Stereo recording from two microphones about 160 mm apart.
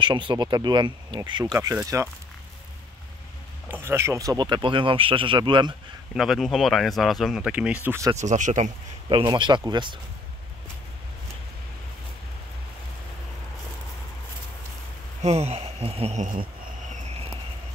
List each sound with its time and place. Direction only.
0.0 s speech: 30° right (ahead or behind)
3.7 s speech: 15° right (ahead or behind)
6.1 s speech: centre (ahead or behind); by 8.2 s 15° right (ahead or behind)
8.2 s speech: 50° right (ahead or behind)
9.1 s speech: 25° right (ahead or behind)
15.2 s speech: 40° right (ahead or behind)